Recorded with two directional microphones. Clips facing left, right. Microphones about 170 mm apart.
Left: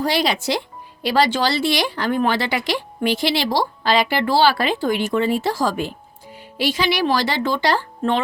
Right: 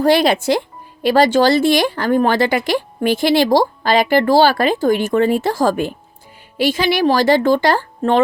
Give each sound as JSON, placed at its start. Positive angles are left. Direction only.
{"t": 0.0, "sound": "speech", "side_deg": -50}